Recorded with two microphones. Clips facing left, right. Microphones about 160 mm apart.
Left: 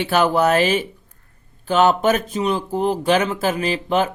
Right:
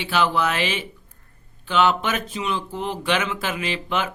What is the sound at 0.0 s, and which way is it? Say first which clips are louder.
Speech: left 5 dB; 45° left (ahead or behind).